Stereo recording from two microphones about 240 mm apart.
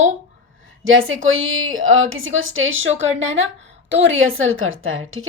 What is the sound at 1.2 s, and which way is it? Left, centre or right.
A woman's voice, right.